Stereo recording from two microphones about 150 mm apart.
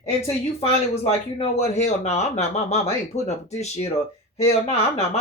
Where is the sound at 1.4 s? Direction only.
45° left (ahead or behind).